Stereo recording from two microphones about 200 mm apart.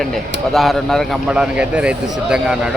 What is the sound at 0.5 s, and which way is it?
A man's voice, centre (ahead or behind).